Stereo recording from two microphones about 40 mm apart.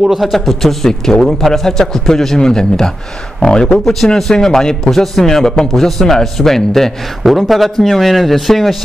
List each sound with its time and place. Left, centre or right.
0.0 s a man's voice: centre
0.3 s a man's voice: centre
4.8 s a man's voice: centre